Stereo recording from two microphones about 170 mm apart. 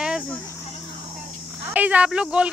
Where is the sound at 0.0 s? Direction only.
5° right (ahead or behind).